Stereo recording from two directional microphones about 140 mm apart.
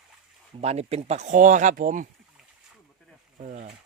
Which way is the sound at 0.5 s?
50° right (ahead or behind).